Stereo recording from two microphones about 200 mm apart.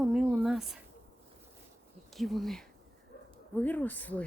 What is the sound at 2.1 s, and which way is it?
Speech, centre (ahead or behind).